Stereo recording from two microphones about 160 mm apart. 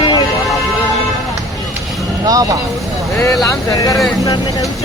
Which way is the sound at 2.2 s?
20° right (ahead or behind).